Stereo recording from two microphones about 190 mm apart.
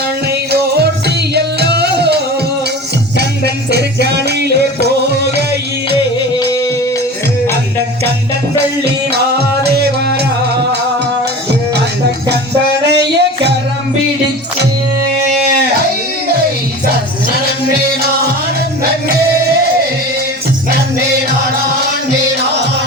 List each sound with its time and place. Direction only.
0.3 s music: 60° right (ahead or behind)
6.4 s music: 20° left (ahead or behind)
9.6 s music: 55° right (ahead or behind)
12.8 s music: 60° right (ahead or behind)
20.7 s music: 60° right (ahead or behind)